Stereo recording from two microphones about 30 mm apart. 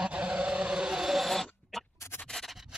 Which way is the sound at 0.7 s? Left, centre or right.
Right.